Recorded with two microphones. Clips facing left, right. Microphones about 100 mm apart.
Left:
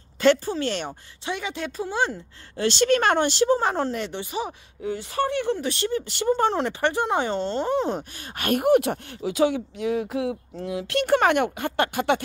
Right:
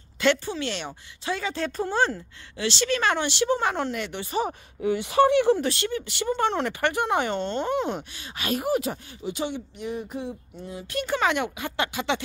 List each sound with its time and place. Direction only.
0.2 s speech: 40° left (ahead or behind)
0.8 s speech: 20° left (ahead or behind)
2.5 s speech: 45° left (ahead or behind)
4.8 s speech: 75° right (ahead or behind)
5.8 s speech: 35° left (ahead or behind)
6.6 s speech: 25° left (ahead or behind)
8.4 s speech: 55° left (ahead or behind)